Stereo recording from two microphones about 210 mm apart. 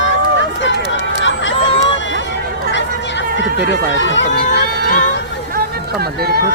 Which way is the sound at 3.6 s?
60° left (ahead or behind).